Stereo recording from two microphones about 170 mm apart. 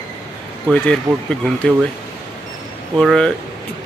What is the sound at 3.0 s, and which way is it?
Speech, 5° left (ahead or behind).